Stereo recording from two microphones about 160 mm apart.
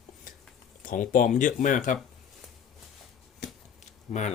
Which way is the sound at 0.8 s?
60° left (ahead or behind).